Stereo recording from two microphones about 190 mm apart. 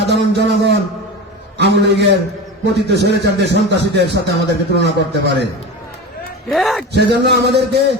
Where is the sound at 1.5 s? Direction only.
60° right (ahead or behind).